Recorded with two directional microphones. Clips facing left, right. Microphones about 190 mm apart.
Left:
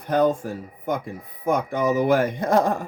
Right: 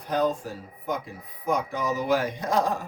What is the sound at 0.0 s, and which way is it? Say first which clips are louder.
Speech: left 5 dB; 55° left (ahead or behind).